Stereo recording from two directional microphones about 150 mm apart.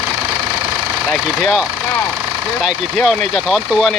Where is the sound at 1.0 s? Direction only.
5° right (ahead or behind).